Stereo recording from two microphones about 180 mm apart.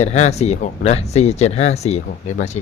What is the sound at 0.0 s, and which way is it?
Speech, 40° left (ahead or behind).